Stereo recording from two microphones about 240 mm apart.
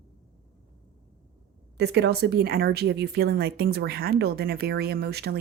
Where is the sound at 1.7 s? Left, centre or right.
Right.